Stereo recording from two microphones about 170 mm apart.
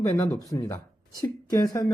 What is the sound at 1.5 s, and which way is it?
Speech, 20° left (ahead or behind).